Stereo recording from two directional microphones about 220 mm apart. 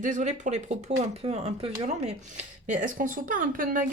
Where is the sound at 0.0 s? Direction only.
35° right (ahead or behind).